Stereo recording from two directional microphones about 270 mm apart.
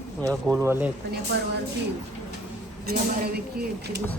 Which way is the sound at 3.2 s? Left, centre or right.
Right.